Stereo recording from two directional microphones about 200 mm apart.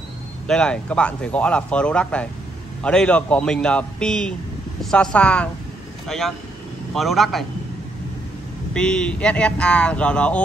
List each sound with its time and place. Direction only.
0.5 s speech: 5° left (ahead or behind)
8.7 s speech: 5° left (ahead or behind)